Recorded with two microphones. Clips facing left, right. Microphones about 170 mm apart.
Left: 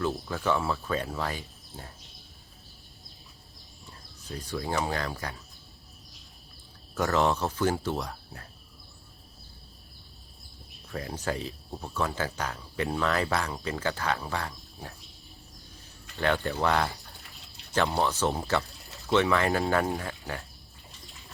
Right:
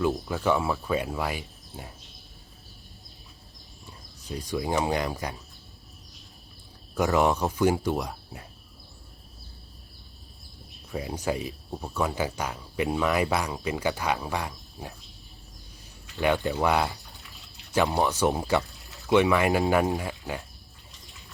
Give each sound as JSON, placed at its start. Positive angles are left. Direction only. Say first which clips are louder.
{"t": 0.0, "sound": "speech", "louder": "right 4 dB", "side_deg": -15}
{"t": 3.8, "sound": "speech", "louder": "right 3 dB", "side_deg": -15}
{"t": 6.9, "sound": "speech", "louder": "right 3 dB", "side_deg": -10}
{"t": 10.9, "sound": "speech", "louder": "right 3 dB", "side_deg": -15}
{"t": 16.2, "sound": "speech", "louder": "right 3 dB", "side_deg": -15}